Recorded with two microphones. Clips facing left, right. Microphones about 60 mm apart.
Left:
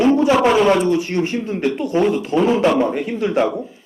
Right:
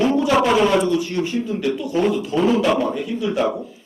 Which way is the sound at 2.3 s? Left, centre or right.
Left.